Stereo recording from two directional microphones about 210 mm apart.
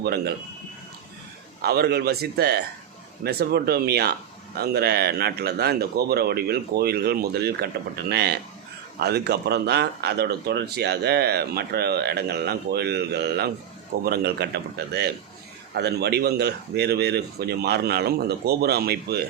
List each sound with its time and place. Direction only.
0.0 s speech: 50° right (ahead or behind)
1.6 s speech: 50° right (ahead or behind)